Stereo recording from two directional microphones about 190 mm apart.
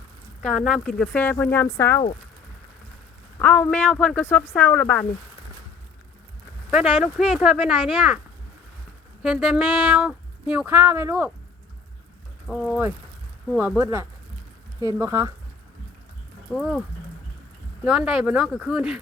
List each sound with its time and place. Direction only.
0.4 s speech: 5° left (ahead or behind)
3.3 s speech: 10° left (ahead or behind)
6.7 s speech: centre (ahead or behind)
9.2 s speech: centre (ahead or behind)
12.5 s speech: centre (ahead or behind)
16.5 s speech: centre (ahead or behind)
17.8 s speech: 5° right (ahead or behind)